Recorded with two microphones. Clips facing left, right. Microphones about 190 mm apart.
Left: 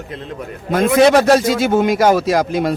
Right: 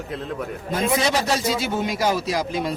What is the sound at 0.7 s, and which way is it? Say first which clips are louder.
Speech: left 11 dB; 65° left (ahead or behind).